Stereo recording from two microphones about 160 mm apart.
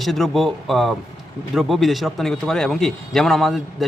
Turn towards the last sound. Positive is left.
turn(degrees=0)  # may be behind; listen again after turning